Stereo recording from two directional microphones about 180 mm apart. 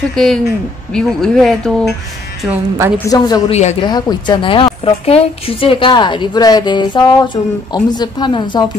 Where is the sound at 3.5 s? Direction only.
35° left (ahead or behind).